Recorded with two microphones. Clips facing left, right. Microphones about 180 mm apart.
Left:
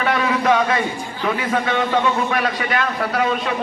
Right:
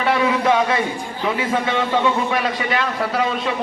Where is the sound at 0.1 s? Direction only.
25° right (ahead or behind).